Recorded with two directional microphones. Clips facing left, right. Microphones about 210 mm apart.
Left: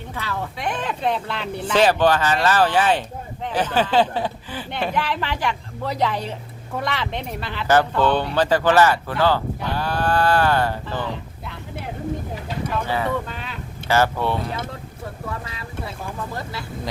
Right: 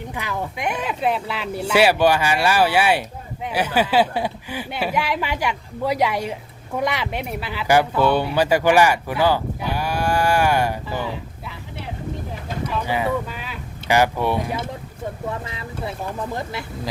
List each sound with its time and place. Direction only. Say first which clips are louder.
0.1 s speech: even; 15° right (ahead or behind)
12.8 s speech: right 3 dB; 15° right (ahead or behind)